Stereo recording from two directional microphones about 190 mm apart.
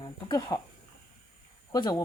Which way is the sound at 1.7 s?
20° left (ahead or behind).